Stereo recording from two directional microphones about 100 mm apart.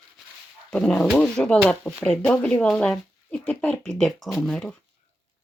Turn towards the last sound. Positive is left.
turn(degrees=5)  # may be behind; listen again after turning